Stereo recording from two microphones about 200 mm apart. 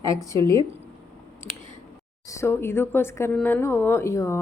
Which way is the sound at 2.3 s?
15° left (ahead or behind).